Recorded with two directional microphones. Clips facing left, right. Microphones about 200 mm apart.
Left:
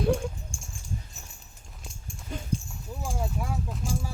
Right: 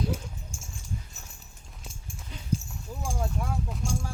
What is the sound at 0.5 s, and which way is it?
Dog, 5° right (ahead or behind).